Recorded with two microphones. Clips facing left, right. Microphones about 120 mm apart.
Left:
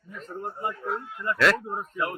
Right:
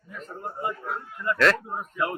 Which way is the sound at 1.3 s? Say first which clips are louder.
Right 1 dB; centre (ahead or behind).